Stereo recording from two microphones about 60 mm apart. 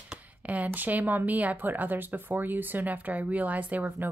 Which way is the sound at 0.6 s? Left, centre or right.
Right.